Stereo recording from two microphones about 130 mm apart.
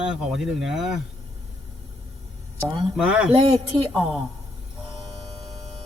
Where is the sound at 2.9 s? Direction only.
10° right (ahead or behind).